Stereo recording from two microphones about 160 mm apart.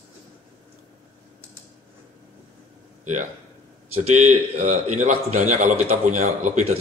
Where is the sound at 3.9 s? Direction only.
45° right (ahead or behind).